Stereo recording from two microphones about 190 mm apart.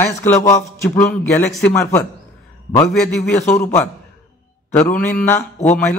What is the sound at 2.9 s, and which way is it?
Speech, centre (ahead or behind).